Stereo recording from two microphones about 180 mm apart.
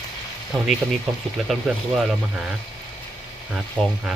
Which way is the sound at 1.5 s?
Centre (ahead or behind).